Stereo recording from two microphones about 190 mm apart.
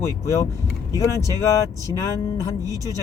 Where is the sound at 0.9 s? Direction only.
15° left (ahead or behind).